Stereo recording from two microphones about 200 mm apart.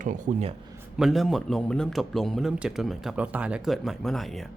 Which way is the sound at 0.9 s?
Centre (ahead or behind).